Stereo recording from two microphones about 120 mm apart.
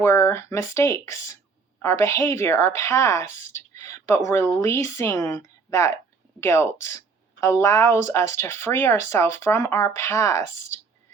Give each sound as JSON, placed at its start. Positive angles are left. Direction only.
{"t": 0.0, "sound": "a woman's voice", "side_deg": 20}